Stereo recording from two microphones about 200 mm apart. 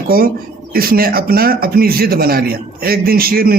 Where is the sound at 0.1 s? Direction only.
45° right (ahead or behind).